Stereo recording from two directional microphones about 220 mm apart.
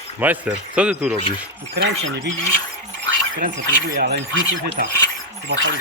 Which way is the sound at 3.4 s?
35° right (ahead or behind).